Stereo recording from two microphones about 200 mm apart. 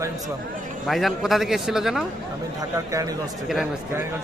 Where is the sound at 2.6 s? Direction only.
15° right (ahead or behind).